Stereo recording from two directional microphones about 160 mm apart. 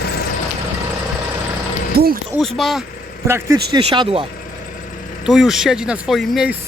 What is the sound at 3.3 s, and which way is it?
Speech, 15° right (ahead or behind).